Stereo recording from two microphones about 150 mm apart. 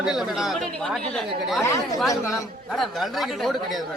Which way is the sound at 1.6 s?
20° left (ahead or behind).